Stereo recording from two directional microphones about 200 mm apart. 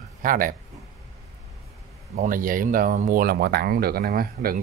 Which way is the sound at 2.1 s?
45° right (ahead or behind).